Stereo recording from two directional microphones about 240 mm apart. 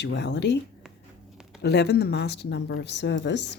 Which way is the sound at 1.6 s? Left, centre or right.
Left.